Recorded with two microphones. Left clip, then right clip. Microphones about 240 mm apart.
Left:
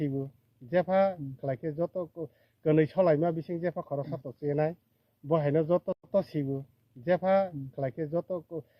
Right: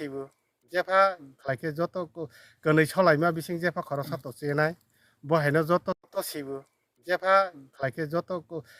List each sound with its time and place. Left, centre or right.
0.0 s speech: right
0.7 s speech: right
1.5 s speech: right
1.9 s speech: right
2.2 s speech: right